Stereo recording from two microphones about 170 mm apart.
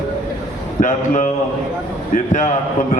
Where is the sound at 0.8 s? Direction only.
50° left (ahead or behind).